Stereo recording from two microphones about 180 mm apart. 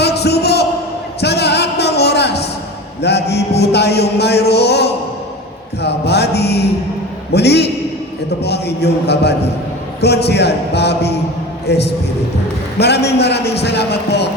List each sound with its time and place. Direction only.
0.0 s a sound: 65° left (ahead or behind)
1.2 s music: 65° left (ahead or behind)
3.0 s a man's voice: 65° left (ahead or behind)